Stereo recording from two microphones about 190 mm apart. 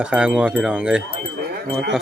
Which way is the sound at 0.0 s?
5° right (ahead or behind).